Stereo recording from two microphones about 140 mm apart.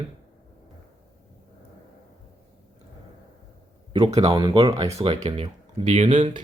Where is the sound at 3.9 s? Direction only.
45° right (ahead or behind).